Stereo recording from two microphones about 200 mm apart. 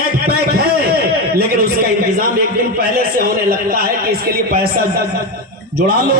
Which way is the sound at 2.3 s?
50° right (ahead or behind).